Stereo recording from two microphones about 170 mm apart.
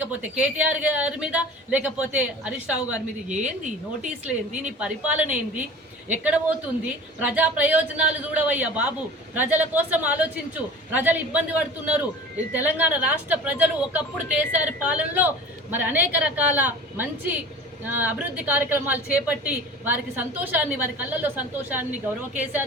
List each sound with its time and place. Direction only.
0.0 s a woman's voice: 10° right (ahead or behind)
3.2 s speech: 45° right (ahead or behind)
4.0 s a woman's voice: 5° right (ahead or behind)